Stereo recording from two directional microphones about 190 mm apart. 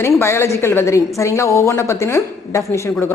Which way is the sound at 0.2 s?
15° left (ahead or behind).